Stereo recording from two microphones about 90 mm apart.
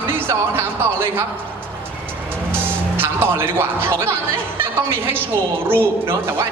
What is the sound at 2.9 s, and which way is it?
A man's voice, 25° right (ahead or behind).